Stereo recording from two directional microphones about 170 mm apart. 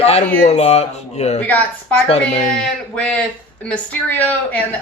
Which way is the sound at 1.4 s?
10° left (ahead or behind).